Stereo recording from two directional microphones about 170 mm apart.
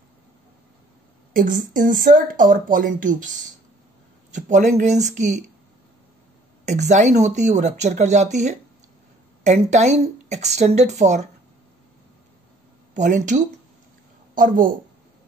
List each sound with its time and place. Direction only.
1.3 s speech: 55° right (ahead or behind)
4.5 s speech: 45° right (ahead or behind)
6.6 s speech: 45° right (ahead or behind)
12.9 s speech: 45° right (ahead or behind)